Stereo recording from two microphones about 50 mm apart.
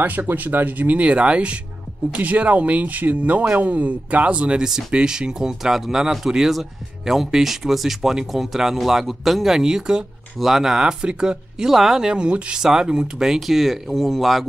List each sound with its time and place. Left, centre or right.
0.0 s speech: right; by 14.4 s centre